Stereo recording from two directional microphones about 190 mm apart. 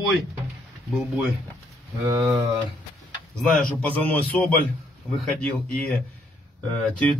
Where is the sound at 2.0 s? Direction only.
15° right (ahead or behind).